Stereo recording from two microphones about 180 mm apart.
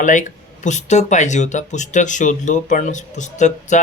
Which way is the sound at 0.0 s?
45° left (ahead or behind).